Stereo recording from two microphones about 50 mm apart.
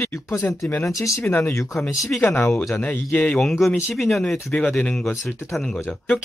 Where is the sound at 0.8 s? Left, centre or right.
Left.